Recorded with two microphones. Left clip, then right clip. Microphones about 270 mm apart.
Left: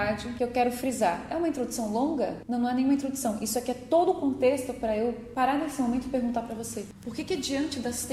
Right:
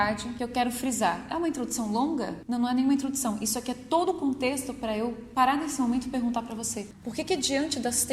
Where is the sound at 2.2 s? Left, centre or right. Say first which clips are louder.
Left 2 dB; right.